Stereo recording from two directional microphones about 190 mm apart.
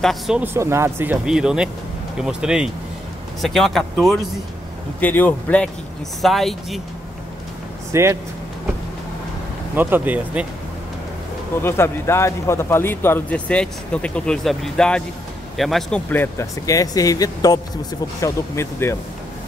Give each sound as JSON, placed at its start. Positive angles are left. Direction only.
{"t": 0.0, "sound": "speech", "side_deg": 0}
{"t": 0.4, "sound": "speech", "side_deg": -15}
{"t": 7.9, "sound": "speech", "side_deg": -15}
{"t": 9.8, "sound": "speech", "side_deg": -10}
{"t": 11.6, "sound": "speech", "side_deg": 15}